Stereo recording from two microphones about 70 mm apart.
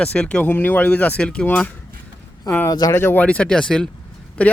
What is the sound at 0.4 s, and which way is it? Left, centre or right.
Speech, left.